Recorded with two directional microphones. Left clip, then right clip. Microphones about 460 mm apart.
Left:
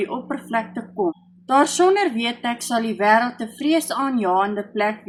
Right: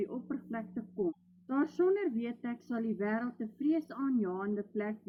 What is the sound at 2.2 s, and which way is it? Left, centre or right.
Speech, centre.